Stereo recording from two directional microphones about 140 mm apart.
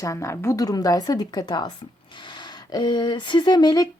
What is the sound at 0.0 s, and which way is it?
Speech, 20° left (ahead or behind).